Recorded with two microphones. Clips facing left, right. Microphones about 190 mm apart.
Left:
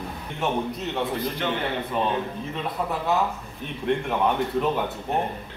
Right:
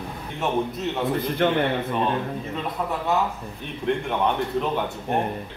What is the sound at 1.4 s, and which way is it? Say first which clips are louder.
Speech: right 8 dB; 55° right (ahead or behind).